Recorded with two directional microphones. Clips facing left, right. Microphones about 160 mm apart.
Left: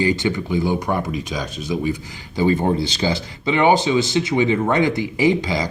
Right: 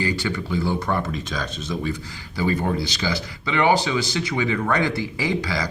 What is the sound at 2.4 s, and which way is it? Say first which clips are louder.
Speech: left 5 dB; 25° left (ahead or behind).